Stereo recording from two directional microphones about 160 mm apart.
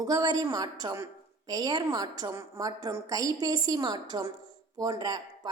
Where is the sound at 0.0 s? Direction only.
25° right (ahead or behind).